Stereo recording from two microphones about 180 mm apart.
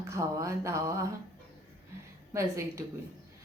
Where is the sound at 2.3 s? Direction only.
15° right (ahead or behind).